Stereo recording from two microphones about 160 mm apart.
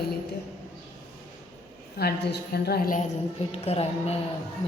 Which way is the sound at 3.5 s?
40° left (ahead or behind).